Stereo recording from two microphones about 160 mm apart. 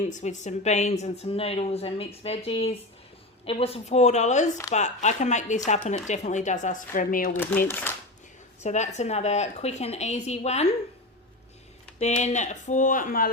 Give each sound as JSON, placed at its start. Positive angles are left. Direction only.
{"t": 0.0, "sound": "speech", "side_deg": 50}
{"t": 7.7, "sound": "speech", "side_deg": 10}
{"t": 8.6, "sound": "speech", "side_deg": 45}
{"t": 11.9, "sound": "speech", "side_deg": 45}